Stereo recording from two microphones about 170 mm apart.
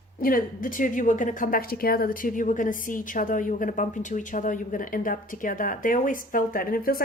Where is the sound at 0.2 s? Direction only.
55° left (ahead or behind).